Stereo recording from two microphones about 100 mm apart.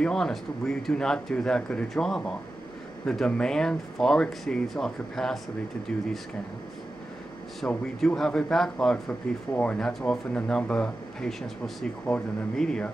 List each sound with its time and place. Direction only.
0.0 s speech: 5° left (ahead or behind)
7.6 s speech: 5° left (ahead or behind)